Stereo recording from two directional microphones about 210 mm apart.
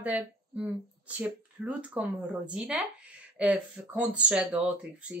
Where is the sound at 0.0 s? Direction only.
5° right (ahead or behind).